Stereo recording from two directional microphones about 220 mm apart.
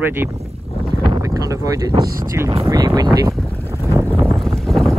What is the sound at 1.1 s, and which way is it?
Speech, 15° right (ahead or behind).